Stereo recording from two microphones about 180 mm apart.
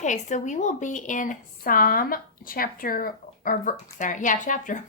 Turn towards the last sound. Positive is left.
turn(degrees=45)  # may be behind; listen again after turning